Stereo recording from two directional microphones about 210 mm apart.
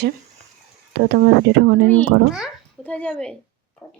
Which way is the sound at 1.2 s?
60° right (ahead or behind).